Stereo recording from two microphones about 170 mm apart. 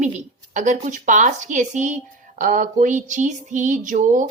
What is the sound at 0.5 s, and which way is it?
Female singing, 45° right (ahead or behind).